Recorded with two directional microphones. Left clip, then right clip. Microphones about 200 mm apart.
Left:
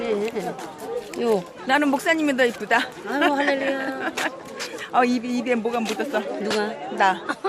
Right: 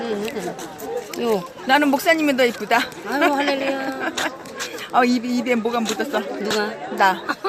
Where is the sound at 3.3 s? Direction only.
10° left (ahead or behind).